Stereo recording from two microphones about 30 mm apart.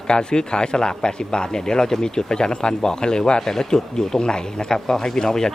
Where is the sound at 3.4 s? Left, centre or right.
Centre.